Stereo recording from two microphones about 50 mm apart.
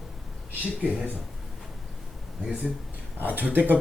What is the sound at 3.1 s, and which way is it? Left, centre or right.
Speech, right.